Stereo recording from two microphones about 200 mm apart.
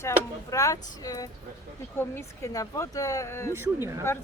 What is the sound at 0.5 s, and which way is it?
Speech, 15° left (ahead or behind).